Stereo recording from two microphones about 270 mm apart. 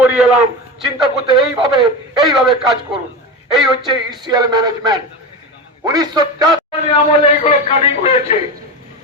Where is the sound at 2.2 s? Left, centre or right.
Centre.